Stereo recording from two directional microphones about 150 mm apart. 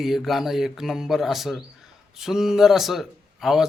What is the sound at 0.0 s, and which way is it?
A man's voice, centre (ahead or behind).